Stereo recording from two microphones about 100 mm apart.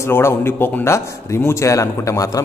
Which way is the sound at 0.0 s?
25° left (ahead or behind).